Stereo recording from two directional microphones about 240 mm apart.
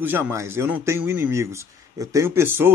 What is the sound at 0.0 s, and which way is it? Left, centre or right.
A man's voice, centre.